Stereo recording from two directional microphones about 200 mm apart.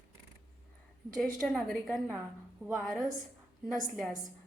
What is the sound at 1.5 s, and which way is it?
A woman's voice, 5° left (ahead or behind).